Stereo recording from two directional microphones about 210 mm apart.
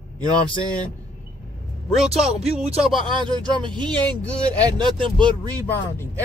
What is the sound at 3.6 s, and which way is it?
Speech, 20° right (ahead or behind).